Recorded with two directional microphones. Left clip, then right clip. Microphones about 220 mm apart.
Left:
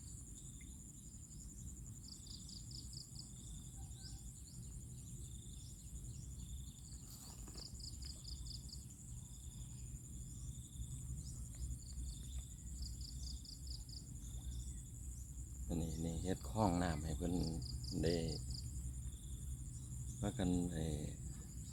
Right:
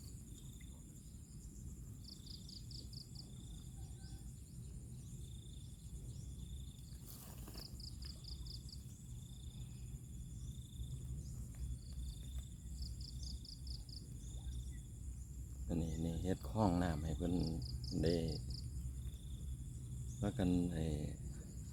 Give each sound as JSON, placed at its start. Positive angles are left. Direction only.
{"t": 2.0, "sound": "cricket", "side_deg": -20}
{"t": 7.5, "sound": "cricket", "side_deg": -40}
{"t": 8.3, "sound": "a sound", "side_deg": -20}
{"t": 15.7, "sound": "speech", "side_deg": -20}
{"t": 20.1, "sound": "speech", "side_deg": -20}